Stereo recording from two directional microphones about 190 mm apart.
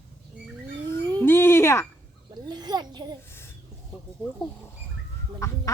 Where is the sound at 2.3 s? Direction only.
20° right (ahead or behind).